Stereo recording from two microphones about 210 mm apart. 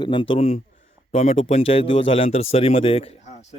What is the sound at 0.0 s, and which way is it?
Speech, 25° left (ahead or behind).